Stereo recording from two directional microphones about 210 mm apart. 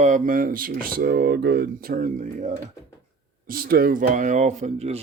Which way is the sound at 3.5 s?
45° right (ahead or behind).